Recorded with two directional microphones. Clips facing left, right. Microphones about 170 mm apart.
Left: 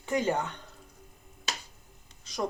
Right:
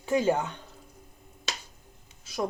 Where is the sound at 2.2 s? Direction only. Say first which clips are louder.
Right 2 dB; 5° right (ahead or behind).